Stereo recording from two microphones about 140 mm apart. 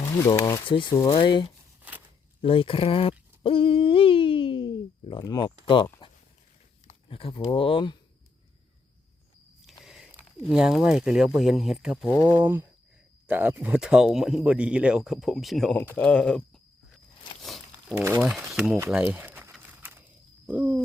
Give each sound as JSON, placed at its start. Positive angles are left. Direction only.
{"t": 0.0, "sound": "speech", "side_deg": 25}
{"t": 0.7, "sound": "speech", "side_deg": 35}
{"t": 2.4, "sound": "hoot", "side_deg": 40}
{"t": 5.2, "sound": "speech", "side_deg": 30}
{"t": 7.1, "sound": "speech", "side_deg": 40}
{"t": 9.8, "sound": "speech", "side_deg": -5}
{"t": 17.4, "sound": "a sound", "side_deg": 0}
{"t": 17.9, "sound": "speech", "side_deg": -20}
{"t": 18.3, "sound": "speech", "side_deg": -5}
{"t": 19.8, "sound": "walk", "side_deg": -10}
{"t": 20.5, "sound": "speech", "side_deg": -10}